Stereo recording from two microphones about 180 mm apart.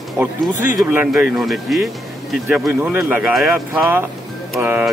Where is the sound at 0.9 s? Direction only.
10° right (ahead or behind).